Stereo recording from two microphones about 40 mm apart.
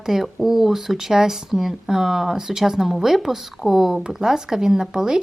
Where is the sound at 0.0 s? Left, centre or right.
Centre.